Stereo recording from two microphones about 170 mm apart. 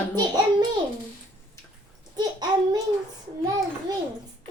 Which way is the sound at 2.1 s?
25° right (ahead or behind).